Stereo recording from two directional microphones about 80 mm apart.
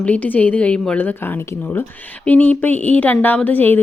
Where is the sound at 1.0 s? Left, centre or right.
Left.